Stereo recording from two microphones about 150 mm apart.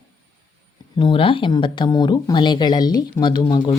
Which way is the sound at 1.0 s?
35° left (ahead or behind).